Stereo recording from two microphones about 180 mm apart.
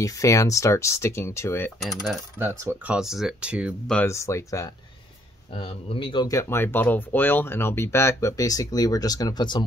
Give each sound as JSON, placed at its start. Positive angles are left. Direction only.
{"t": 0.0, "sound": "speech", "side_deg": 15}
{"t": 1.8, "sound": "speech", "side_deg": 0}
{"t": 2.3, "sound": "speech", "side_deg": -15}
{"t": 3.0, "sound": "speech", "side_deg": 0}
{"t": 3.9, "sound": "speech", "side_deg": 15}
{"t": 5.6, "sound": "speech", "side_deg": 30}